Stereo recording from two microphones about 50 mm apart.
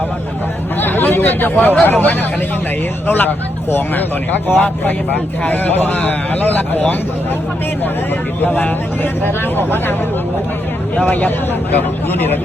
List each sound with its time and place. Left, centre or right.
0.8 s chatter: left
1.8 s speech: left
9.2 s speech: left
11.0 s speech: left